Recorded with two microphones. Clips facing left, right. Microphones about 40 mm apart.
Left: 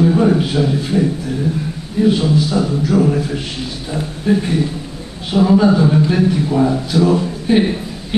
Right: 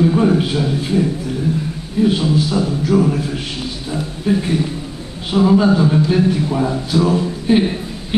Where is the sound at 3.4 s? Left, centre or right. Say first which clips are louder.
Even; centre.